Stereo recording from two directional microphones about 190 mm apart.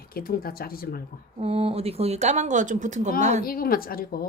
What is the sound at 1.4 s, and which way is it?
Speech, 30° right (ahead or behind).